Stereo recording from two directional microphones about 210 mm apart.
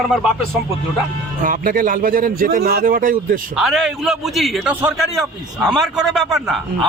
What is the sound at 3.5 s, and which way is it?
A man's voice, centre (ahead or behind).